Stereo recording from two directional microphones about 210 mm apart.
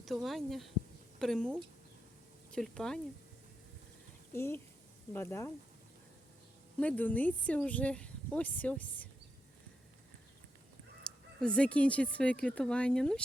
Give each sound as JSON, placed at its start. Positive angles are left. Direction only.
{"t": 0.0, "sound": "speech", "side_deg": 0}
{"t": 2.6, "sound": "speech", "side_deg": 5}
{"t": 4.4, "sound": "speech", "side_deg": 10}
{"t": 6.7, "sound": "speech", "side_deg": 5}
{"t": 11.0, "sound": "speech", "side_deg": 5}